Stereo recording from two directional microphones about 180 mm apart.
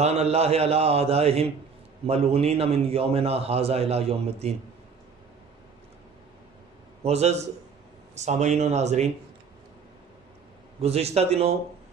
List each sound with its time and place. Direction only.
0.0 s a man's voice: 35° right (ahead or behind)
7.0 s a man's voice: 35° right (ahead or behind)
10.8 s a man's voice: 35° right (ahead or behind)